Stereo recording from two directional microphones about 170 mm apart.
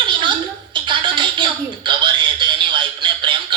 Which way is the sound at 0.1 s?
30° right (ahead or behind).